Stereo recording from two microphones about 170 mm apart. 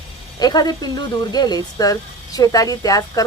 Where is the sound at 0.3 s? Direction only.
25° left (ahead or behind).